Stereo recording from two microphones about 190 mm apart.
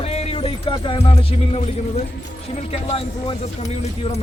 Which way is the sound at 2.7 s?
30° left (ahead or behind).